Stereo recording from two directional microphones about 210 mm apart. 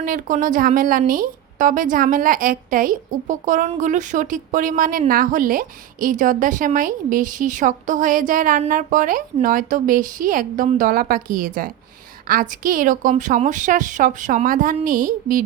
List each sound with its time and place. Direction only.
0.0 s a woman's voice: 40° right (ahead or behind)